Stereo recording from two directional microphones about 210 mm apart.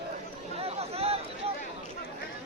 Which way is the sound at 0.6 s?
30° right (ahead or behind).